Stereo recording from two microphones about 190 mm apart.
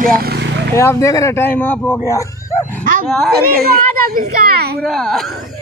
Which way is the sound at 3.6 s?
50° right (ahead or behind).